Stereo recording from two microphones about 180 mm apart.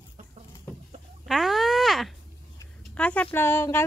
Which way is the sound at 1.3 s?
Centre (ahead or behind).